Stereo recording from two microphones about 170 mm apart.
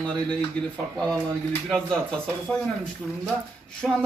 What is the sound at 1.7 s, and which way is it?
Speech, 5° left (ahead or behind).